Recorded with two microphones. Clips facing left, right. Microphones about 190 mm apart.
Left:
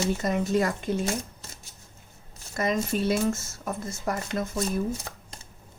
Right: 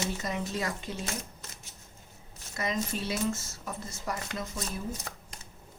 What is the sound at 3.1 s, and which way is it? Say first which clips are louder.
Speech: left 6 dB; 45° left (ahead or behind).